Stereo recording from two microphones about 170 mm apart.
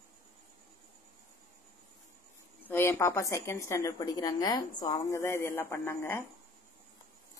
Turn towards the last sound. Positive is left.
turn(degrees=15)  # may be behind; listen again after turning